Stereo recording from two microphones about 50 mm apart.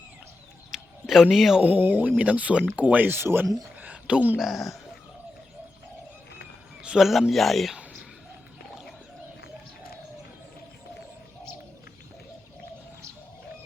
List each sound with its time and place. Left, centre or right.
0.7 s a sound: centre
1.6 s speech: right
2.0 s speech: right
3.1 s speech: right
4.4 s speech: centre
7.0 s speech: centre